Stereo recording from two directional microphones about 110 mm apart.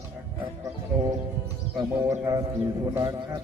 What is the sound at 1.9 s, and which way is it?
Speech, 30° right (ahead or behind).